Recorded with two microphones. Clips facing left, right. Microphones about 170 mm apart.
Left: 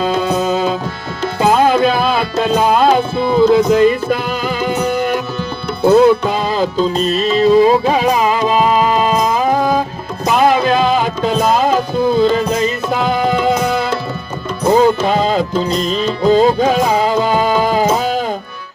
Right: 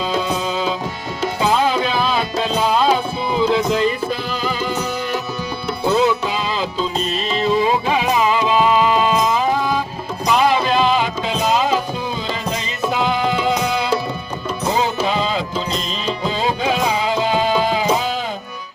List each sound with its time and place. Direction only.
0.0 s music: 50° left (ahead or behind)
2.4 s tabla: 50° left (ahead or behind)
3.5 s music: 50° left (ahead or behind)
14.7 s music: 50° left (ahead or behind)